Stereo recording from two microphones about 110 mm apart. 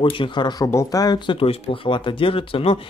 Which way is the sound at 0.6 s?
30° left (ahead or behind).